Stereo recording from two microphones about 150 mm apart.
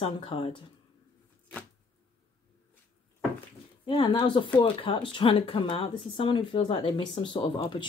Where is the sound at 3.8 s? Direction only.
35° left (ahead or behind).